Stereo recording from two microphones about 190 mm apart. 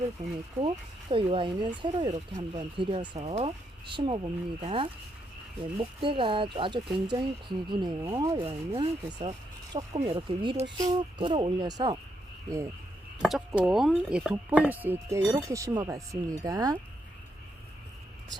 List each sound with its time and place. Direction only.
1.1 s speech: 25° right (ahead or behind)
2.1 s speech: 40° right (ahead or behind)
2.7 s speech: 25° right (ahead or behind)
13.2 s speech: centre (ahead or behind); by 16.7 s 20° right (ahead or behind)